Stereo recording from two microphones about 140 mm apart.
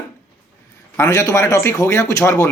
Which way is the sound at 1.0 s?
20° left (ahead or behind).